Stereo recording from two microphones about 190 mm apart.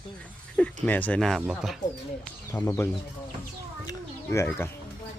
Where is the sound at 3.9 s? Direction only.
15° left (ahead or behind).